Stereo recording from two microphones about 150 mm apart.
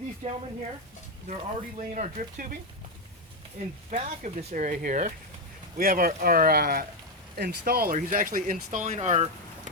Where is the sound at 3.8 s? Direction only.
55° right (ahead or behind); by 6.8 s 80° right.